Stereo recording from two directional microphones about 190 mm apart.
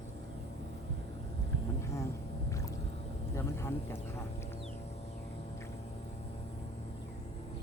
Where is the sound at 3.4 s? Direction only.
15° left (ahead or behind).